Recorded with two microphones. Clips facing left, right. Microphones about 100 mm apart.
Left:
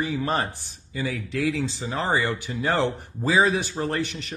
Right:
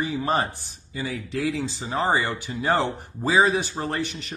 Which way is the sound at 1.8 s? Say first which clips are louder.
Right 4 dB; 15° right (ahead or behind).